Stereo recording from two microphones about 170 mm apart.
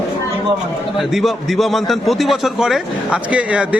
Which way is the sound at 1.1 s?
Centre (ahead or behind).